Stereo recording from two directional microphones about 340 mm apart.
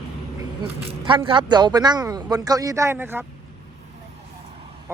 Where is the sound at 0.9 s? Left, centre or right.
Centre.